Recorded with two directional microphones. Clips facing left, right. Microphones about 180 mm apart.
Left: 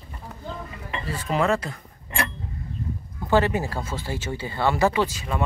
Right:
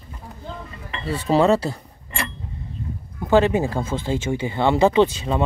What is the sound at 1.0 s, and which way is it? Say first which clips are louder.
Speech: right 6 dB; 30° right (ahead or behind).